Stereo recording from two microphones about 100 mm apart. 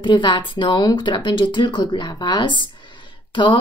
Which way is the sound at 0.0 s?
55° left (ahead or behind).